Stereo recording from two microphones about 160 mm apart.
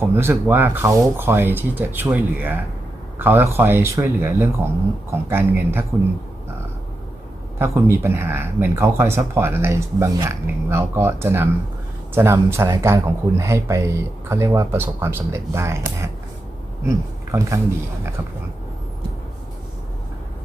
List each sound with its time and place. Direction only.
0.0 s speech: 15° right (ahead or behind)
7.6 s speech: 15° right (ahead or behind)
17.3 s speech: 15° right (ahead or behind)